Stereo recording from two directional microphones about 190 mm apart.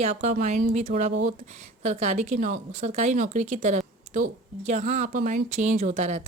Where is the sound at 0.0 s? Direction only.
35° right (ahead or behind).